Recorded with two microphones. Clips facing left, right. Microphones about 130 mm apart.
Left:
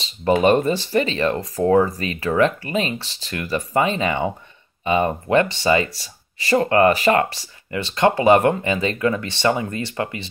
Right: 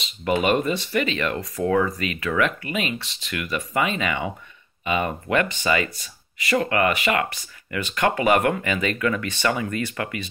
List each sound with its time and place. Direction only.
0.0 s speech: 35° left (ahead or behind)